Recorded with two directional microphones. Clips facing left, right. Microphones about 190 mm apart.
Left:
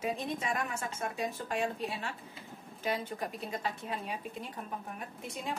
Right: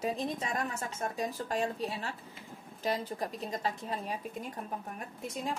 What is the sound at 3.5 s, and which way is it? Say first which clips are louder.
Speech: right 2 dB; 40° right (ahead or behind).